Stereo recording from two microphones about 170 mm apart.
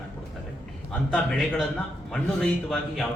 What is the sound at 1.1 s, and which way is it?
A man's voice, centre (ahead or behind).